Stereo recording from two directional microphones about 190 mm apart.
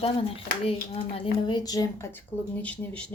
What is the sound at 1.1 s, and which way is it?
A woman's voice, 25° left (ahead or behind).